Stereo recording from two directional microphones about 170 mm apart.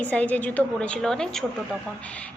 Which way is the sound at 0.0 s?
10° left (ahead or behind).